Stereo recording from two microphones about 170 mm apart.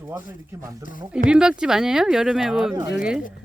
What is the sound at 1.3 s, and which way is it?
Speech, 5° right (ahead or behind).